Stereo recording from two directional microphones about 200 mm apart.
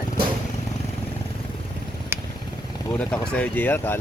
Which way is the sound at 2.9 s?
5° left (ahead or behind).